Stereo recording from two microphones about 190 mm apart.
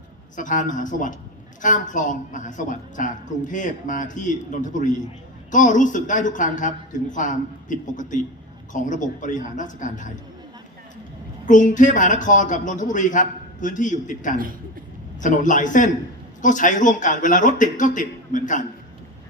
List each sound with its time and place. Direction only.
0.3 s a woman's voice: 40° left (ahead or behind)
11.4 s a woman's voice: 40° left (ahead or behind)